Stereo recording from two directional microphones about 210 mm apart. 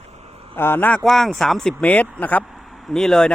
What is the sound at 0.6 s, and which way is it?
Speech, 10° left (ahead or behind).